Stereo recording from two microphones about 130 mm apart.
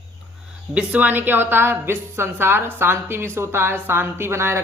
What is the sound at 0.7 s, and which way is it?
A woman's voice, 10° right (ahead or behind).